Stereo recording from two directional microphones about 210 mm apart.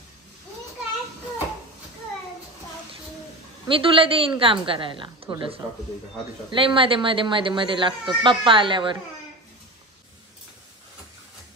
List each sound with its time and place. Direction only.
3.6 s speech: 25° right (ahead or behind)